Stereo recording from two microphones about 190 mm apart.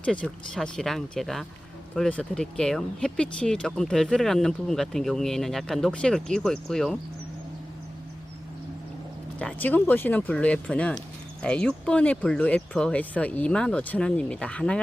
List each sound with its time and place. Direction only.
0.0 s speech: 5° left (ahead or behind)
9.4 s speech: 5° left (ahead or behind)